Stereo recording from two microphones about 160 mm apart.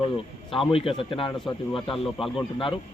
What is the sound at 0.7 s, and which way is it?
A man's voice, 35° left (ahead or behind).